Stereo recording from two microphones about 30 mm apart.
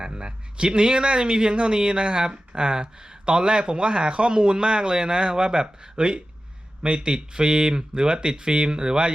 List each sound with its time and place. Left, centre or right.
0.0 s speech: right